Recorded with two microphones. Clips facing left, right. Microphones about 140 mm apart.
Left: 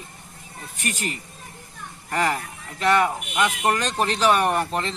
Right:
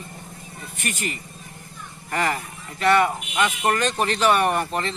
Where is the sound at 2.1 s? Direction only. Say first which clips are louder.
Left 1 dB; centre (ahead or behind).